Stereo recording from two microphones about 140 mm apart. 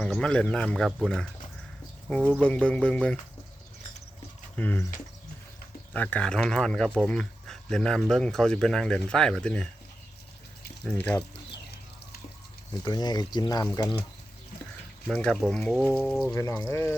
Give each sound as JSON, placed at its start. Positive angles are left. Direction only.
{"t": 0.0, "sound": "speech", "side_deg": 5}
{"t": 2.4, "sound": "speech", "side_deg": 10}
{"t": 4.5, "sound": "speech", "side_deg": 10}
{"t": 5.9, "sound": "speech", "side_deg": 10}
{"t": 10.8, "sound": "speech", "side_deg": 10}
{"t": 12.7, "sound": "speech", "side_deg": 30}
{"t": 15.0, "sound": "speech", "side_deg": 5}
{"t": 16.4, "sound": "speech", "side_deg": 25}